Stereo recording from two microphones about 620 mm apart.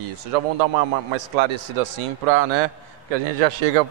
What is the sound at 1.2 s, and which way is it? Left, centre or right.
A man's voice, right.